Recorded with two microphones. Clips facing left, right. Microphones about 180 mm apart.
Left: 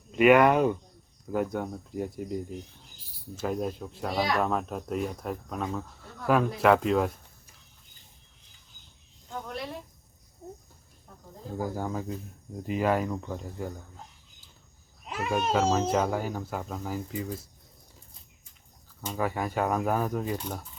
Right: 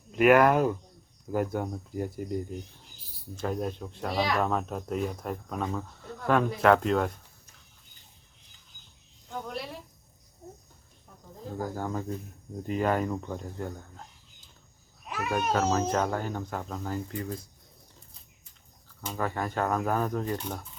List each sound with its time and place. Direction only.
0.2 s speech: centre (ahead or behind)
11.5 s speech: 10° left (ahead or behind)
15.0 s a sound: 25° left (ahead or behind)
15.5 s speech: 10° left (ahead or behind)
19.1 s speech: 10° left (ahead or behind)